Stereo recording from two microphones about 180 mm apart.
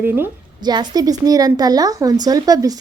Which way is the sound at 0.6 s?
25° right (ahead or behind).